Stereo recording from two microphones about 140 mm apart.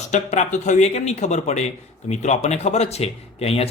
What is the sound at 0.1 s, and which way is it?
Speech, 60° left (ahead or behind).